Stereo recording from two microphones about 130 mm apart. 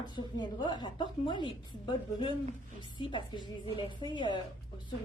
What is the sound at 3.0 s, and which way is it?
A woman's voice, 35° left (ahead or behind).